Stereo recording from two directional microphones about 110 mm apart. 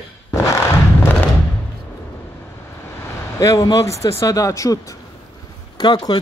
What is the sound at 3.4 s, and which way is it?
Speech, 30° left (ahead or behind).